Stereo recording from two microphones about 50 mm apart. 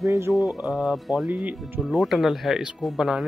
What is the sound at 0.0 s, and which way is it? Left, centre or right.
Speech, right.